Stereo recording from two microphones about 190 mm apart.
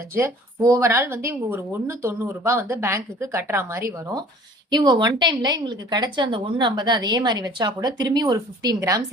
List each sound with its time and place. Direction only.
0.1 s a woman's voice: 15° right (ahead or behind)